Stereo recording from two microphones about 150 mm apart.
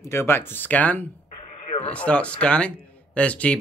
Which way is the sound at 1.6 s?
45° left (ahead or behind).